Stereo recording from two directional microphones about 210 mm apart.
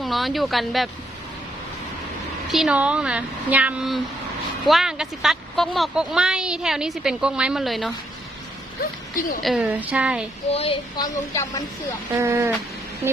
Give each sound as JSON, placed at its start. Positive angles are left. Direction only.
{"t": 0.0, "sound": "a woman's voice", "side_deg": 0}
{"t": 2.5, "sound": "a woman's voice", "side_deg": -5}
{"t": 9.4, "sound": "a woman's voice", "side_deg": 0}
{"t": 10.5, "sound": "speech", "side_deg": 25}
{"t": 12.1, "sound": "speech", "side_deg": -10}